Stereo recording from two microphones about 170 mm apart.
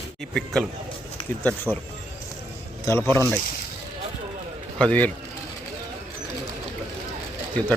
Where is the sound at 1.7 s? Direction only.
10° right (ahead or behind).